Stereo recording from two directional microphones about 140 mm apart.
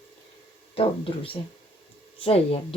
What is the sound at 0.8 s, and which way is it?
A woman's voice, 40° left (ahead or behind).